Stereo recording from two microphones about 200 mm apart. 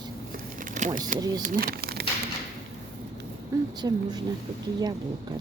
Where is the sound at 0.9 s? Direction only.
45° right (ahead or behind).